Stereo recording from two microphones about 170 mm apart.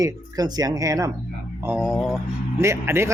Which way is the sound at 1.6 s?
5° right (ahead or behind).